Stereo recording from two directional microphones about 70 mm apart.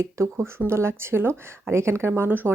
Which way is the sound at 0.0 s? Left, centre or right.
Right.